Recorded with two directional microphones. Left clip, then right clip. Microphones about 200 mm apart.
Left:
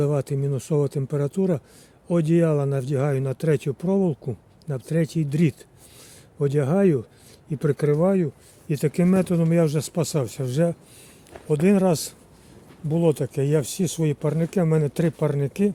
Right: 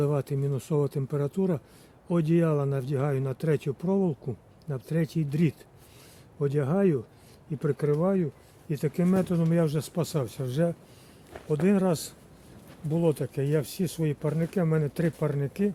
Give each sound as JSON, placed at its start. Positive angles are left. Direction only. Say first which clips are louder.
{"t": 0.0, "sound": "speech", "louder": "left 4 dB", "side_deg": 25}